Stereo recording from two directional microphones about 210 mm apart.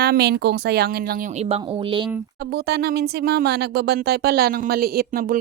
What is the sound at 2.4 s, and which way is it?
Speech, 50° right (ahead or behind).